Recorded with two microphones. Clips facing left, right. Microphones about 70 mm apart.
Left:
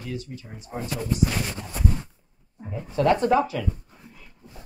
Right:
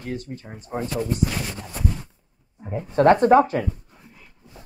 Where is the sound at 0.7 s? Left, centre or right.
Right.